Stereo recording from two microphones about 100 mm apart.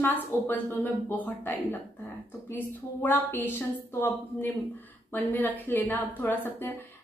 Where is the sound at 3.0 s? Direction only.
20° left (ahead or behind).